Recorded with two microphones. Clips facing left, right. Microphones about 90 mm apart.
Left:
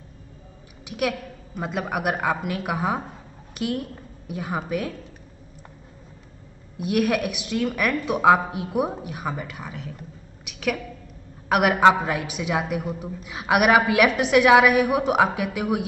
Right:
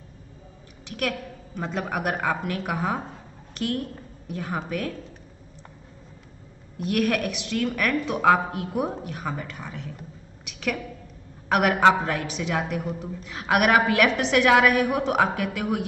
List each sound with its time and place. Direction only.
0.8 s a woman's voice: 10° left (ahead or behind)
6.8 s a woman's voice: 10° left (ahead or behind)
10.4 s a sound: 5° left (ahead or behind)
11.4 s a woman's voice: 5° left (ahead or behind)